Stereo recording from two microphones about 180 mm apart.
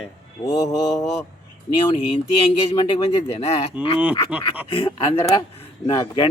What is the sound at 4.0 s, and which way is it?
Speech, 5° right (ahead or behind).